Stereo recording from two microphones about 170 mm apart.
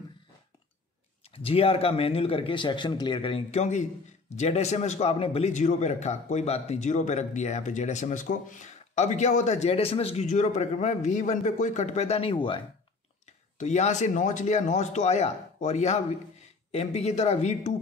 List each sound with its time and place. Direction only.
1.2 s a man's voice: 35° left (ahead or behind)
13.2 s a man's voice: 40° left (ahead or behind)